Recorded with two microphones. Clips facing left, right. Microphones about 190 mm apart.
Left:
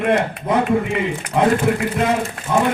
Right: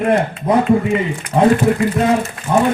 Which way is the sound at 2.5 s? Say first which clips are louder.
Right 3 dB; 40° right (ahead or behind).